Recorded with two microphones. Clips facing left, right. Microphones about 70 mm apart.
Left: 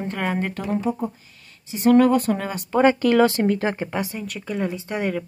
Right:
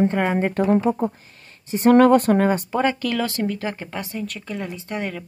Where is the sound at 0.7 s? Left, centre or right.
Right.